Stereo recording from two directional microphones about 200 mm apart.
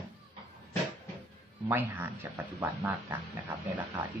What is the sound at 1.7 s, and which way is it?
Speech, 10° right (ahead or behind).